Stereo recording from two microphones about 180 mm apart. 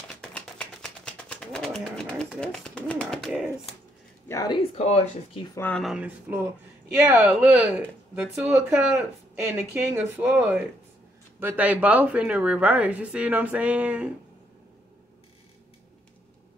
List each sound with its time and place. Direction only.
0.1 s a sound: 5° left (ahead or behind)
4.3 s speech: 20° left (ahead or behind)
5.5 s speech: 10° left (ahead or behind); by 14.1 s 5° right (ahead or behind)